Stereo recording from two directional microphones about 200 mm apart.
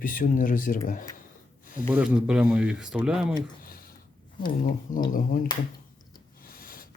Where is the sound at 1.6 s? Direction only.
40° left (ahead or behind).